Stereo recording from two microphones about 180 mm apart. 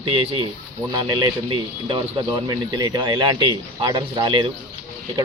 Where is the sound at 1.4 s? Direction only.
30° right (ahead or behind).